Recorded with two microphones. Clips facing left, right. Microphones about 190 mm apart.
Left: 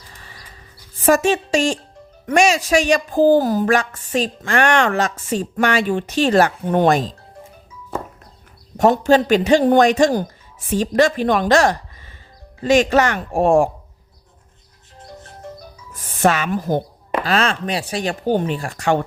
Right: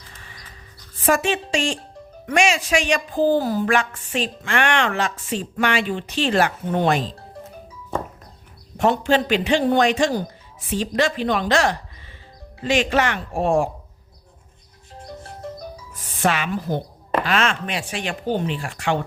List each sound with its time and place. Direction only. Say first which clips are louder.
1.0 s speech: left 5 dB; 40° left (ahead or behind)
8.8 s speech: left 5 dB; 40° left (ahead or behind)
16.2 s speech: left 4 dB; 45° left (ahead or behind)